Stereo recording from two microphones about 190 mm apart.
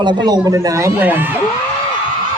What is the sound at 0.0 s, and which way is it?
A man's voice, 25° right (ahead or behind).